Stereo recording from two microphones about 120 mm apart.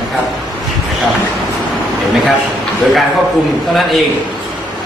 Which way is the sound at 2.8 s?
Centre (ahead or behind).